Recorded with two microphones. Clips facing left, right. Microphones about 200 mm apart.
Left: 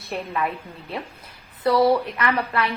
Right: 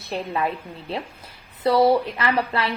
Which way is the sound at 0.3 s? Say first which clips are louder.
Right 1 dB; 30° right (ahead or behind).